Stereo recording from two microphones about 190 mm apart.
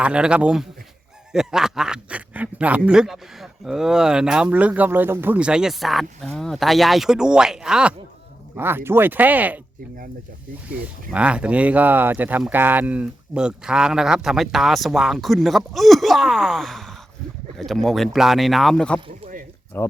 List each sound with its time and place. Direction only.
0.0 s a man's voice: 5° right (ahead or behind)
10.7 s a man's voice: 5° right (ahead or behind)
18.9 s speech: 25° right (ahead or behind)
19.7 s speech: 10° left (ahead or behind)